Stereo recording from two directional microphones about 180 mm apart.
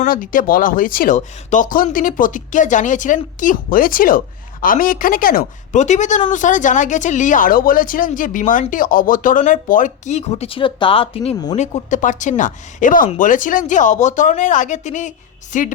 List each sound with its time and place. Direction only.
0.0 s speech: 50° left (ahead or behind)